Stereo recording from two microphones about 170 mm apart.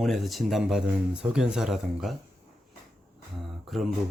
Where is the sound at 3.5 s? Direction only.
Centre (ahead or behind).